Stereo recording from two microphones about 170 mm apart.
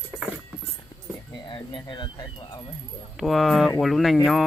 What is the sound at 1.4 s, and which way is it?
Speech, 30° left (ahead or behind).